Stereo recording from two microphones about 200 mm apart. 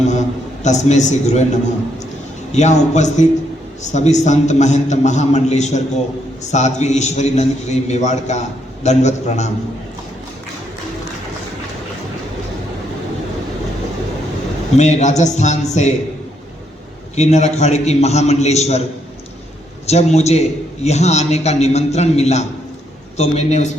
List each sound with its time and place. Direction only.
0.6 s a man's voice: 35° left (ahead or behind)
2.5 s a man's voice: 35° left (ahead or behind)
14.8 s a man's voice: 35° left (ahead or behind)
17.2 s a man's voice: 35° left (ahead or behind)
19.9 s a man's voice: 35° left (ahead or behind)